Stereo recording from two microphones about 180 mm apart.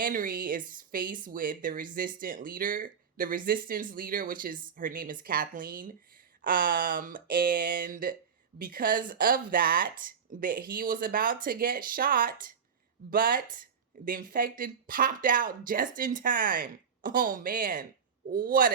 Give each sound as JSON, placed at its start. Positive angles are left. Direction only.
{"t": 0.0, "sound": "speech", "side_deg": -50}